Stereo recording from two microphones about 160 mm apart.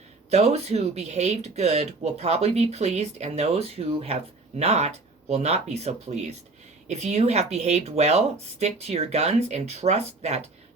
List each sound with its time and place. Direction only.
0.3 s speech: 40° right (ahead or behind)